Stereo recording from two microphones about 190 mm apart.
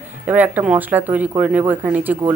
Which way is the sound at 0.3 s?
10° right (ahead or behind).